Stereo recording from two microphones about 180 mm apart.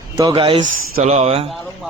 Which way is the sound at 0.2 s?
25° right (ahead or behind).